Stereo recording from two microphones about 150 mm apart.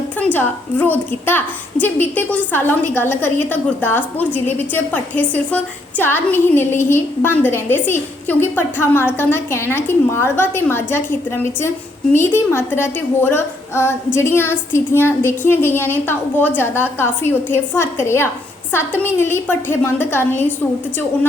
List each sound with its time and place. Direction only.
0.3 s a woman's voice: 15° left (ahead or behind)